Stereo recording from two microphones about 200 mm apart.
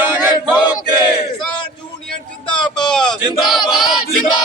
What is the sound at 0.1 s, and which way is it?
Male singing, 5° right (ahead or behind).